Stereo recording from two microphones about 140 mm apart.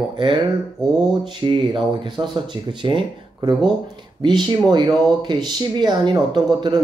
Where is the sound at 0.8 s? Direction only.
30° right (ahead or behind).